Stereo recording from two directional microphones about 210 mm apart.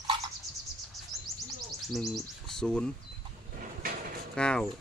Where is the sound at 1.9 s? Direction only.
Centre (ahead or behind).